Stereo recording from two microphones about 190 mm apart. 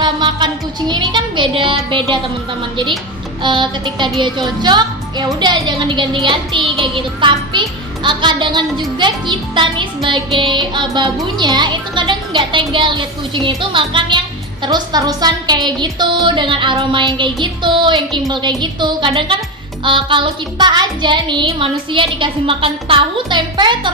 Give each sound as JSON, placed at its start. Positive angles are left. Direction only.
{"t": 0.0, "sound": "music", "side_deg": -25}
{"t": 3.4, "sound": "speech", "side_deg": -25}